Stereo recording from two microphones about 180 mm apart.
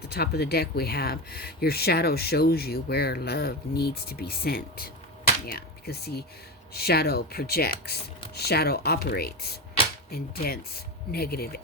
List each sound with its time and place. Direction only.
0.1 s speech: 60° left (ahead or behind)